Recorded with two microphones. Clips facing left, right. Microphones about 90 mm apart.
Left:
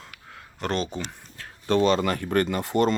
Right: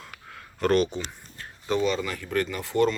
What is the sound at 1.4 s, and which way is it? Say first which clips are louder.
Speech: left 4 dB; 75° left (ahead or behind).